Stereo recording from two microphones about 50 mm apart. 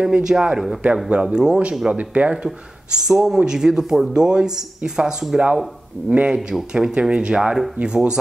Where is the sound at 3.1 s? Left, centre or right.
Centre.